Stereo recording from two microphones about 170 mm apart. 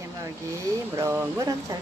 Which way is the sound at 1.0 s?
15° right (ahead or behind).